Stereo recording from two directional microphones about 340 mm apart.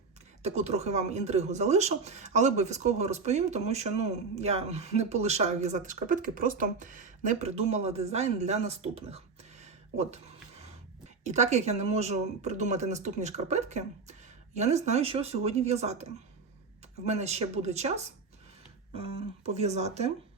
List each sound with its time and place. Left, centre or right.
0.4 s speech: centre
11.2 s speech: centre
17.1 s speech: centre
19.5 s speech: centre